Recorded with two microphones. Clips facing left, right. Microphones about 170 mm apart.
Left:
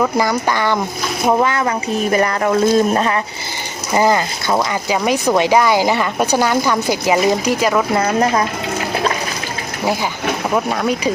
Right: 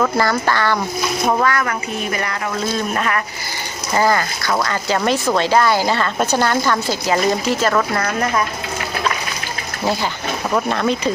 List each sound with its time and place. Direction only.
0.0 s speech: 15° left (ahead or behind)
2.0 s speech: 35° left (ahead or behind)
3.9 s speech: 20° left (ahead or behind)
9.8 s speech: 15° left (ahead or behind)